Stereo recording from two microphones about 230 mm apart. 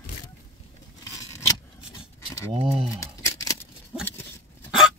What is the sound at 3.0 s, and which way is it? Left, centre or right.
Scissors, centre.